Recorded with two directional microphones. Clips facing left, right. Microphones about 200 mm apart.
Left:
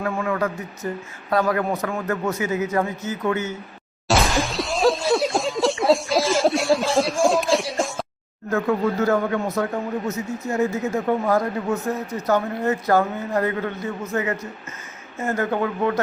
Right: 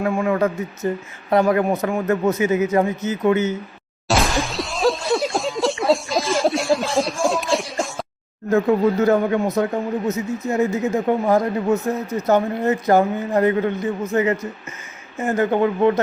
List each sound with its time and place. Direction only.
0.0 s speech: 25° right (ahead or behind)
4.1 s breaking: centre (ahead or behind)
8.4 s speech: 20° right (ahead or behind)